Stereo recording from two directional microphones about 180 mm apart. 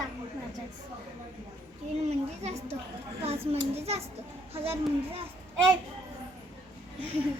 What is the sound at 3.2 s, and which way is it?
A child's voice, 35° right (ahead or behind).